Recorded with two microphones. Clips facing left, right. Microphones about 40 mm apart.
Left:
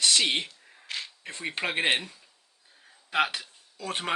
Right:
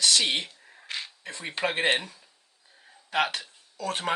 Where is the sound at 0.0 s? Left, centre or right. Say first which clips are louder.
Even; left.